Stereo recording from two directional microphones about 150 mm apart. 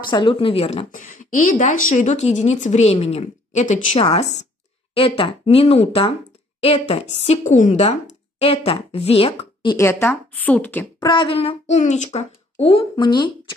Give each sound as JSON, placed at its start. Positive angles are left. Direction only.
{"t": 0.1, "sound": "a woman's voice", "side_deg": 35}
{"t": 4.0, "sound": "speech", "side_deg": 40}
{"t": 7.2, "sound": "a woman's voice", "side_deg": 55}
{"t": 8.4, "sound": "a woman's voice", "side_deg": 40}
{"t": 9.8, "sound": "a woman's voice", "side_deg": 15}
{"t": 11.0, "sound": "speech", "side_deg": 30}
{"t": 11.8, "sound": "speech", "side_deg": 50}